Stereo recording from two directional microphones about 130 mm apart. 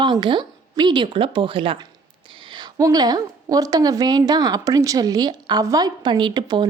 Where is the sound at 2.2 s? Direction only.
40° right (ahead or behind).